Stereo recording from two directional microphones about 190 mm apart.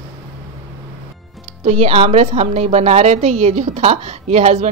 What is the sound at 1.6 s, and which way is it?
A woman's voice, 35° right (ahead or behind).